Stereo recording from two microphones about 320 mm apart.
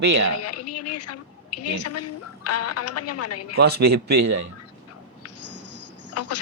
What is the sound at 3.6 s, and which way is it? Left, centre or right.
Speech, right.